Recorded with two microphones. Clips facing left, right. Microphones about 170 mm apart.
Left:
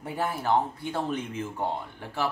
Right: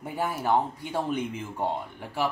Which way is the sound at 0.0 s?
10° right (ahead or behind).